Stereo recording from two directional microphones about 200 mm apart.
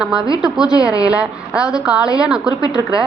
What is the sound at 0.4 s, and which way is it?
A woman's voice, 5° right (ahead or behind).